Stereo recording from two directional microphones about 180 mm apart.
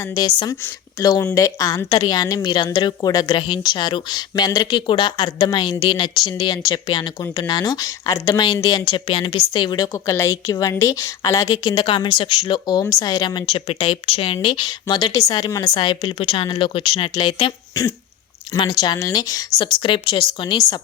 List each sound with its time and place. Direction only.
0.0 s speech: 20° left (ahead or behind)